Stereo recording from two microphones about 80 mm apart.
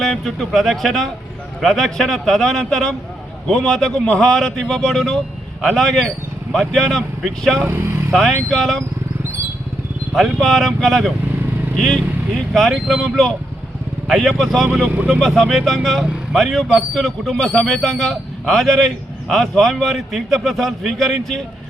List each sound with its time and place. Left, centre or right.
0.0 s a man's voice: centre
7.7 s vehicle: right
8.1 s speech: centre
10.2 s speech: centre
14.9 s speech: centre
15.4 s speech: centre